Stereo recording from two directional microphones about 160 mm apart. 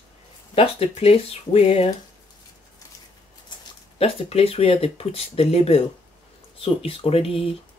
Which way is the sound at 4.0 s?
40° left (ahead or behind).